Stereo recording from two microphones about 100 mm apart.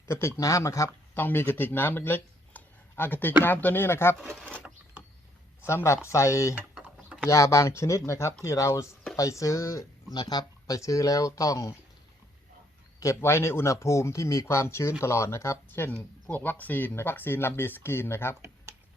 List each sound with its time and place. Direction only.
0.1 s speech: 30° left (ahead or behind)
1.2 s speech: 20° left (ahead or behind)
4.3 s a sound: 10° left (ahead or behind)
5.6 s speech: 25° left (ahead or behind)
6.8 s typing: 10° right (ahead or behind)
7.3 s speech: 30° left (ahead or behind)
10.2 s speech: 45° left (ahead or behind)
10.8 s speech: 35° left (ahead or behind)
13.0 s speech: 30° left (ahead or behind)